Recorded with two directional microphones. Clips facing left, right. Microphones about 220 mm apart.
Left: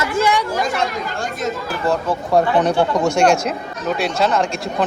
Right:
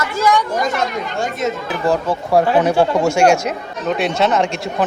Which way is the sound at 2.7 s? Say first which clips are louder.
Right 2 dB; 25° right (ahead or behind).